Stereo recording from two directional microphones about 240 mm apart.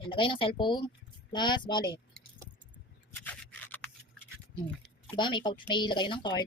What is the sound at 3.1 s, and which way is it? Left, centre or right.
Rub, centre.